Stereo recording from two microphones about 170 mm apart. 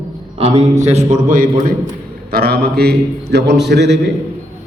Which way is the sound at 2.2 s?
65° right (ahead or behind).